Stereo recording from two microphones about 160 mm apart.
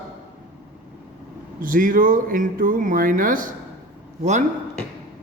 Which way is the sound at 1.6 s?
60° right (ahead or behind).